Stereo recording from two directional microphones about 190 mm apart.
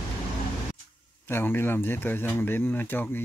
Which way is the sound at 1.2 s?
10° left (ahead or behind).